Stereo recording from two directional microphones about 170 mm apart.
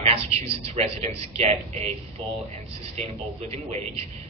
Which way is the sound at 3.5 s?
40° right (ahead or behind).